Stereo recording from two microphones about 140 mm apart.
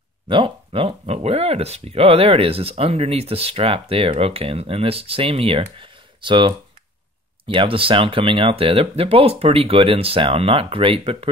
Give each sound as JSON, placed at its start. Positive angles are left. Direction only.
{"t": 0.3, "sound": "speech", "side_deg": -40}